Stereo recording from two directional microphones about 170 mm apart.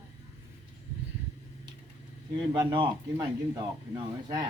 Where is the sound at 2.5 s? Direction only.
25° right (ahead or behind).